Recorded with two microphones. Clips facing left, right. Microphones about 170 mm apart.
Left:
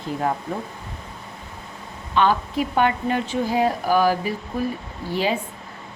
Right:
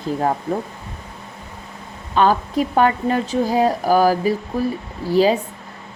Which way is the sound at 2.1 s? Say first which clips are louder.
Right 3 dB; 40° right (ahead or behind).